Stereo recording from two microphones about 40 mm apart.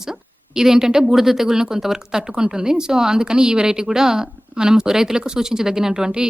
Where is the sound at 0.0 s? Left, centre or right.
Centre.